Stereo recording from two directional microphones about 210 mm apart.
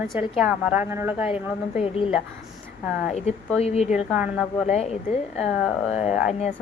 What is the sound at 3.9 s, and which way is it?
Speech, 5° right (ahead or behind).